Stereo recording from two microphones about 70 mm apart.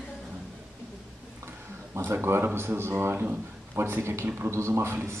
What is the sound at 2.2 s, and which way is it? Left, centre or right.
Speech, right.